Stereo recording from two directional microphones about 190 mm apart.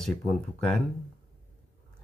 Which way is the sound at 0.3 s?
5° left (ahead or behind).